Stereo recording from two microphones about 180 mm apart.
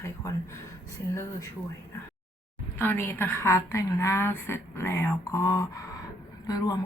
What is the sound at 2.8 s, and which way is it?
Speech, 10° left (ahead or behind).